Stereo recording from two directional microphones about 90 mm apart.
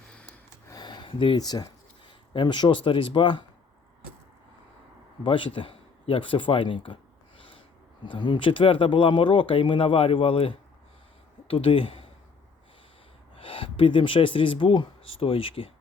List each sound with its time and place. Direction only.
0.1 s gasp: 15° left (ahead or behind)
0.8 s a sound: 55° left (ahead or behind); by 1.4 s 75° left (ahead or behind)
1.4 s speech: 45° left (ahead or behind)
2.3 s speech: 60° left (ahead or behind)
5.2 s speech: 70° left (ahead or behind)
8.0 s speech: 65° left (ahead or behind); by 12.1 s 80° left
13.3 s speech: 85° left